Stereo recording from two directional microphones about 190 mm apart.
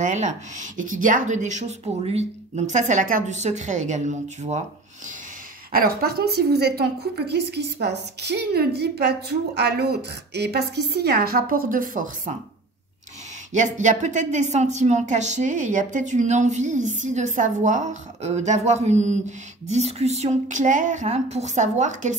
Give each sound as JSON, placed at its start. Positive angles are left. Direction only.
{"t": 0.0, "sound": "a woman's voice", "side_deg": -40}
{"t": 5.7, "sound": "a woman's voice", "side_deg": -50}
{"t": 13.5, "sound": "a woman's voice", "side_deg": -40}